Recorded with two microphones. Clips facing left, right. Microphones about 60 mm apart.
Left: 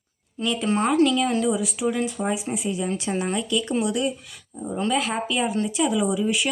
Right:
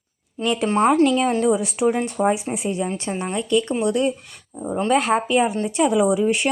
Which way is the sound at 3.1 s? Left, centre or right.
Centre.